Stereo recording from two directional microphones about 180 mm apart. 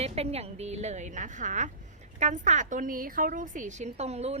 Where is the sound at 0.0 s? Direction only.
35° right (ahead or behind).